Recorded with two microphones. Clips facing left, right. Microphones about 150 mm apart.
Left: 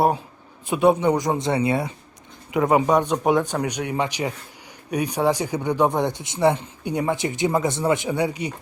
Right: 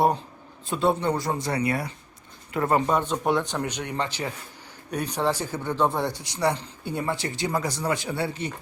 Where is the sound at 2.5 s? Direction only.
10° left (ahead or behind).